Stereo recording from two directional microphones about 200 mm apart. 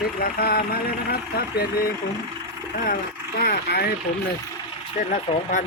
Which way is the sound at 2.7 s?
45° left (ahead or behind).